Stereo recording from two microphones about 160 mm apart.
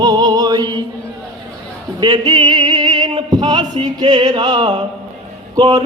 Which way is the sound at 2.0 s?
25° right (ahead or behind).